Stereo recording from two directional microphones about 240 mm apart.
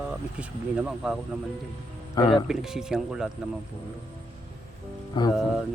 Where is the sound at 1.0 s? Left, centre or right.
Centre.